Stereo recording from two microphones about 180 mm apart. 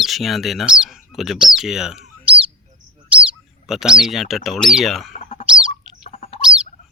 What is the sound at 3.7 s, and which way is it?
Speech, 5° right (ahead or behind).